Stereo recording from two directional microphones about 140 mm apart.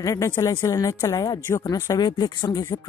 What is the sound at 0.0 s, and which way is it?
Speech, 25° left (ahead or behind).